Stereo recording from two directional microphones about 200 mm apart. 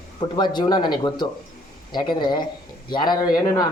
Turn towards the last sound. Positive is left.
turn(degrees=20)  # may be behind; listen again after turning